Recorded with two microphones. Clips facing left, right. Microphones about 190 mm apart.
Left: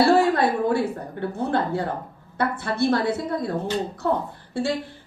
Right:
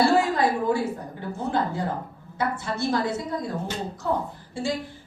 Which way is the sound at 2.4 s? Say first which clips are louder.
Left 4 dB; 60° left (ahead or behind).